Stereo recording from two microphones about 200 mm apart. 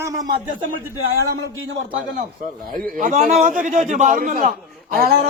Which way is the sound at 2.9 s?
40° right (ahead or behind).